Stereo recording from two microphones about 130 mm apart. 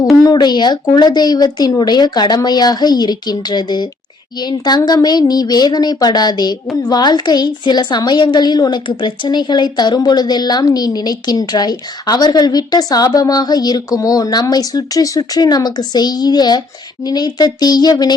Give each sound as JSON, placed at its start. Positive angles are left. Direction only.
{"t": 0.2, "sound": "a woman's voice", "side_deg": 30}